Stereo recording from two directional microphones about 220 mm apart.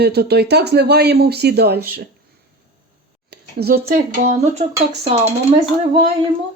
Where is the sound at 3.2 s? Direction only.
45° right (ahead or behind).